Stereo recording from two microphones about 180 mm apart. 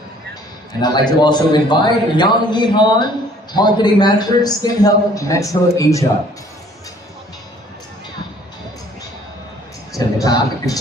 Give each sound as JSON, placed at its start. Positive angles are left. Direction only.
{"t": 0.8, "sound": "a man's voice", "side_deg": 25}
{"t": 10.2, "sound": "a man's voice", "side_deg": 20}